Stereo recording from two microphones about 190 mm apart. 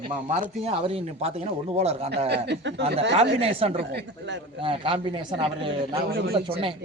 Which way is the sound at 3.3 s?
30° right (ahead or behind).